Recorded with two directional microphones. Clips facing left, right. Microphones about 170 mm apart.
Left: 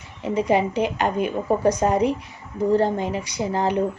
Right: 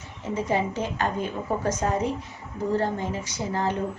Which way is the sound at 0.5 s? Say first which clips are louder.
Left 5 dB; 15° left (ahead or behind).